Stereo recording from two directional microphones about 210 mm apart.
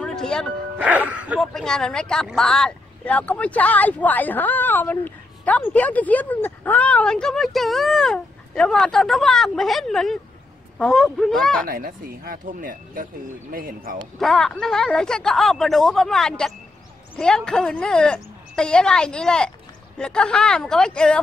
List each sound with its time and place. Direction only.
0.0 s music: 5° left (ahead or behind)
0.8 s speech: 5° right (ahead or behind)
11.6 s speech: 40° right (ahead or behind)
14.2 s speech: centre (ahead or behind)